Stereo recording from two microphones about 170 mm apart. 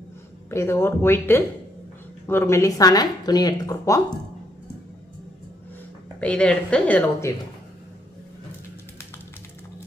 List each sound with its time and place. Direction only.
0.5 s a woman's voice: 15° left (ahead or behind)
6.1 s a woman's voice: 5° left (ahead or behind)